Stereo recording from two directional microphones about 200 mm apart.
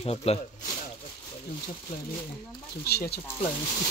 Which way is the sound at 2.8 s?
50° left (ahead or behind).